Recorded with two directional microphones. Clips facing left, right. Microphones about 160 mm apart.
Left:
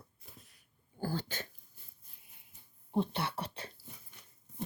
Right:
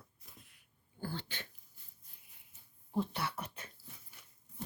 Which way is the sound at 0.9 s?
40° left (ahead or behind).